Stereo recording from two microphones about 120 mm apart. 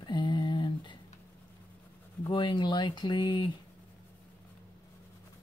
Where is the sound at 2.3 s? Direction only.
45° left (ahead or behind).